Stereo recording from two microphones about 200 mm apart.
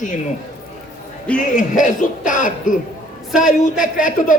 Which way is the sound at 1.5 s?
40° left (ahead or behind).